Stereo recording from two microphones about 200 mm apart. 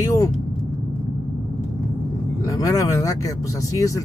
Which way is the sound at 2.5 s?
15° left (ahead or behind).